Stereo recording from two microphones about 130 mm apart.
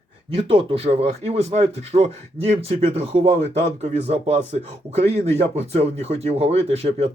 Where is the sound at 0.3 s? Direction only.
45° right (ahead or behind).